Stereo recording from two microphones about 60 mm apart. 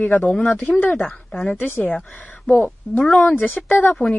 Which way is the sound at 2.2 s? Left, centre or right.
Left.